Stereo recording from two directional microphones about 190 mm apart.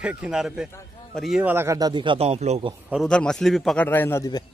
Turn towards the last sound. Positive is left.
turn(degrees=15)  # may be behind; listen again after turning